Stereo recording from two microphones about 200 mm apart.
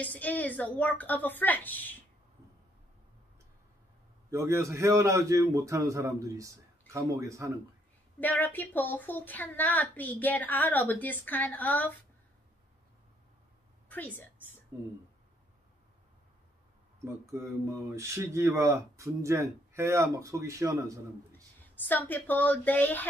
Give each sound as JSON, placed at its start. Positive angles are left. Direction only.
{"t": 0.0, "sound": "a woman's voice", "side_deg": 10}
{"t": 4.3, "sound": "speech", "side_deg": -15}
{"t": 8.2, "sound": "a woman's voice", "side_deg": 10}
{"t": 13.8, "sound": "a woman's voice", "side_deg": 10}
{"t": 14.7, "sound": "speech", "side_deg": -15}
{"t": 17.0, "sound": "speech", "side_deg": -15}
{"t": 21.8, "sound": "a woman's voice", "side_deg": 10}